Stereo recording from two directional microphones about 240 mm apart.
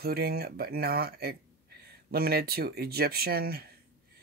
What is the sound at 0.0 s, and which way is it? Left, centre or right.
Speech, right.